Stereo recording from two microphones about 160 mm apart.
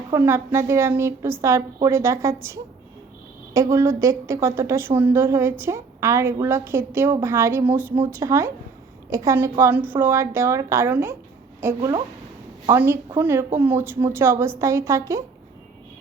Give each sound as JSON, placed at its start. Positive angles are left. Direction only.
{"t": 0.1, "sound": "a woman's voice", "side_deg": -15}